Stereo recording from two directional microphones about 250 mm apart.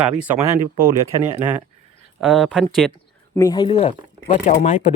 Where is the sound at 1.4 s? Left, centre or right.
Centre.